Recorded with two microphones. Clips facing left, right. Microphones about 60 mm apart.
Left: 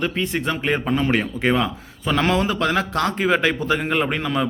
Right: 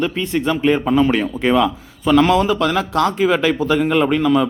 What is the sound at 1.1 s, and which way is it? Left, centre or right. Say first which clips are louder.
Speech: right 3 dB; centre.